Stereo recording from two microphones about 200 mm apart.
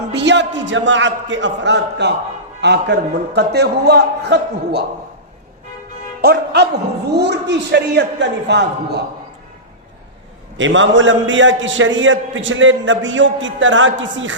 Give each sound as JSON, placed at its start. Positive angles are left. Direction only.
{"t": 0.1, "sound": "a man's voice", "side_deg": -60}
{"t": 6.2, "sound": "a man's voice", "side_deg": -55}
{"t": 10.6, "sound": "a man's voice", "side_deg": -70}